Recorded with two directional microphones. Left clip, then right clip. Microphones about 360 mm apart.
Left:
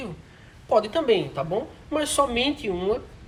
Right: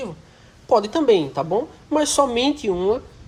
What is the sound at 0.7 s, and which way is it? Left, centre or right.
Speech, centre.